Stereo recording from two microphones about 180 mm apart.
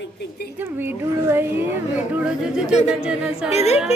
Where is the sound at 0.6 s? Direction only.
10° right (ahead or behind).